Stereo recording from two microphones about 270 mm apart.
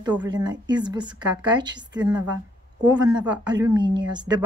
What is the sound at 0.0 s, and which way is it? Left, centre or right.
Speech, centre.